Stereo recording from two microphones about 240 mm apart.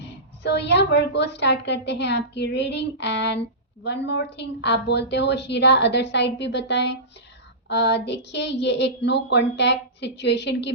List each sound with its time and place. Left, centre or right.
0.4 s a woman's voice: left